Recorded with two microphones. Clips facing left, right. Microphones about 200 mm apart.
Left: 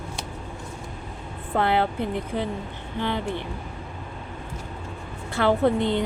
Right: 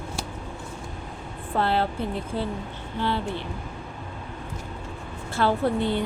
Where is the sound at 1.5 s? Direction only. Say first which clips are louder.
Left 2 dB; 20° left (ahead or behind).